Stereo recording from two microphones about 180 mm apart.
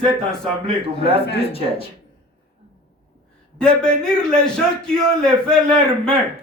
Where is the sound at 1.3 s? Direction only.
30° left (ahead or behind).